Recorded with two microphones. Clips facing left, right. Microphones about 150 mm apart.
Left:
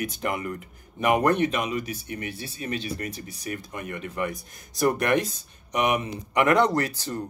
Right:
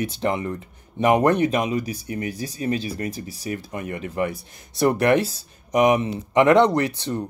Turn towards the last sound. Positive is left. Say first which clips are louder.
# right 4 dB
turn(degrees=-25)  # may be behind; listen again after turning